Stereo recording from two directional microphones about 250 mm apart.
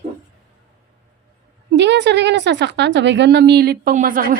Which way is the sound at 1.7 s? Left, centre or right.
Right.